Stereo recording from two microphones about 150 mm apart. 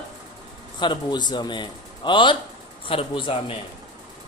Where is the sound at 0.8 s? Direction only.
30° left (ahead or behind).